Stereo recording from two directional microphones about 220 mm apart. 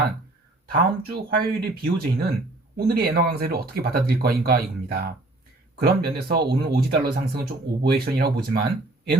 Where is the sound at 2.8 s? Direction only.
45° right (ahead or behind).